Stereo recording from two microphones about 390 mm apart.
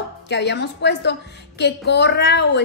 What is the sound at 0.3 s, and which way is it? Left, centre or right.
A woman's voice, left.